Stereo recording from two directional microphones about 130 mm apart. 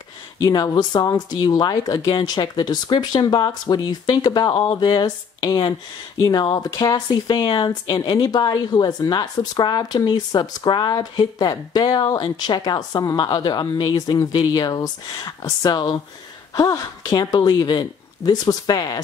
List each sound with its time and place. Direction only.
0.4 s a woman's voice: 30° left (ahead or behind)